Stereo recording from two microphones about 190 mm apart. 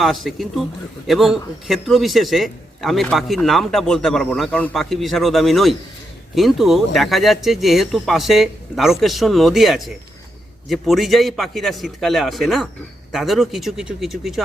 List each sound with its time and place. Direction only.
0.0 s a man's voice: centre (ahead or behind)